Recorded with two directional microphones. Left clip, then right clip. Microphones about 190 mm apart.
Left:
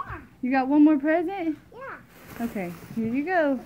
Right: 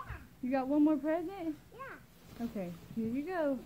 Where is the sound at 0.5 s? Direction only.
10° right (ahead or behind).